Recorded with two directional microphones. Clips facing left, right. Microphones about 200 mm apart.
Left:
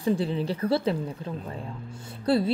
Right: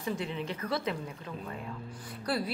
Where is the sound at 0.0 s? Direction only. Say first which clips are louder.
Left 9 dB; 35° left (ahead or behind).